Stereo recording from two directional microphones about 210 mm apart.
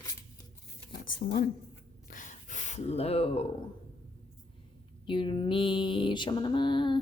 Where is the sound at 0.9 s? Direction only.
40° left (ahead or behind).